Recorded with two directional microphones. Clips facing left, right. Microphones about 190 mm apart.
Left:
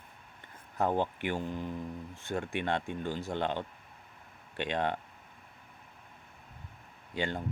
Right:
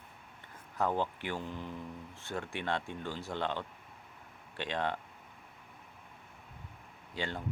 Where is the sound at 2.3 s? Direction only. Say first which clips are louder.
Left 4 dB; 50° left (ahead or behind).